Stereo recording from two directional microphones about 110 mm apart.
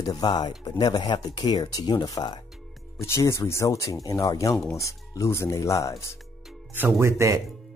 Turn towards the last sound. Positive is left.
turn(degrees=-25)  # may be behind; listen again after turning